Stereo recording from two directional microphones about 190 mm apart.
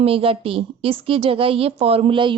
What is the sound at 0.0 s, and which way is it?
A woman's voice, 30° right (ahead or behind).